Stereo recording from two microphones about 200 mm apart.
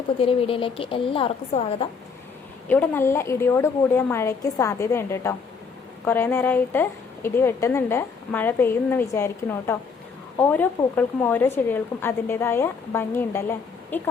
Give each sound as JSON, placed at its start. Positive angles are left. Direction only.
{"t": 0.2, "sound": "a woman's voice", "side_deg": 30}
{"t": 2.6, "sound": "a woman's voice", "side_deg": 10}